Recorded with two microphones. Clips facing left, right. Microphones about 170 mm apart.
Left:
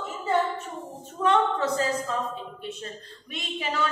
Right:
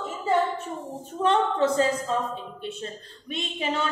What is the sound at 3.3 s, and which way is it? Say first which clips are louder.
Speech: right 3 dB; 25° right (ahead or behind).